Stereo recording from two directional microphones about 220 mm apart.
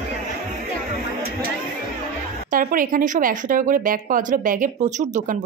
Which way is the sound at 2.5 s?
40° right (ahead or behind).